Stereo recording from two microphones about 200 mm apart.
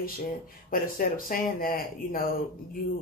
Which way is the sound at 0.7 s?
45° left (ahead or behind).